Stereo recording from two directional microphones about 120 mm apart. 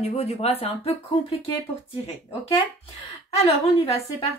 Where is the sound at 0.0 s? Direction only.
60° left (ahead or behind).